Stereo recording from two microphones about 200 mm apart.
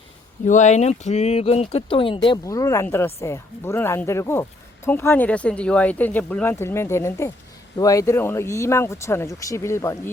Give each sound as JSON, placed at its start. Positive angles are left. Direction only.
{"t": 0.4, "sound": "speech", "side_deg": 35}